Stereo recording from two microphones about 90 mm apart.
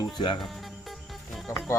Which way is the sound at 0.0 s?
55° left (ahead or behind).